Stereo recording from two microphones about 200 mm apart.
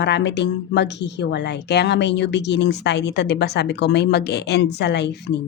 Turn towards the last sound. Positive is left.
turn(degrees=55)  # may be behind; listen again after turning